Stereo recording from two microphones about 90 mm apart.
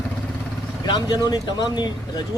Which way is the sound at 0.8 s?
55° left (ahead or behind).